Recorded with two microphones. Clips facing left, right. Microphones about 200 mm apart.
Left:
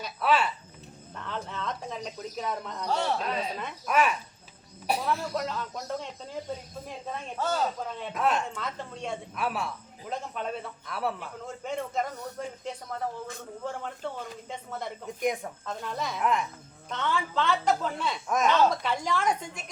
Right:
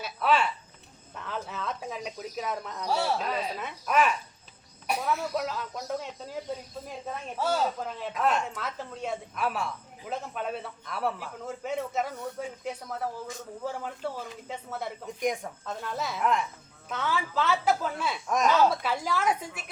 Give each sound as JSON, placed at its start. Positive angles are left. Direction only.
{"t": 0.0, "sound": "a sound", "side_deg": 0}
{"t": 1.1, "sound": "a woman's voice", "side_deg": -5}
{"t": 7.3, "sound": "a woman's voice", "side_deg": -10}